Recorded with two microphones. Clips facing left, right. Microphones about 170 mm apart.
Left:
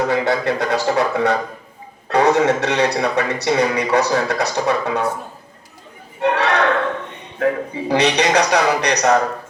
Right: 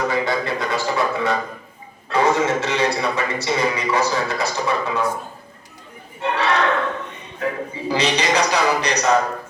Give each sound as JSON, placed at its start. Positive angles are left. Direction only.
{"t": 0.1, "sound": "a man's voice", "side_deg": 65}
{"t": 6.2, "sound": "a man's voice", "side_deg": 65}